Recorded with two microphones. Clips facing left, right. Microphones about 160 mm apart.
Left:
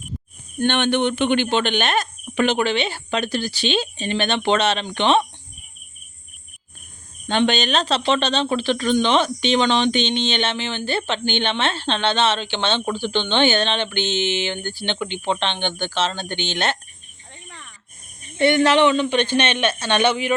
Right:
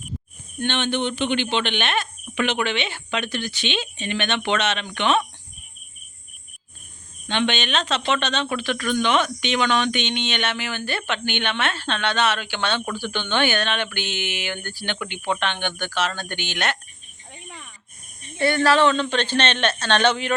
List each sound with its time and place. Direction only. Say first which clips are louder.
0.6 s speech: left 5 dB; 55° left (ahead or behind); by 5.2 s 30° left (ahead or behind)
7.3 s speech: left 4 dB; 40° left (ahead or behind)
17.3 s a sound: right 2 dB; 10° right (ahead or behind)
18.3 s speech: left 3 dB; 20° left (ahead or behind)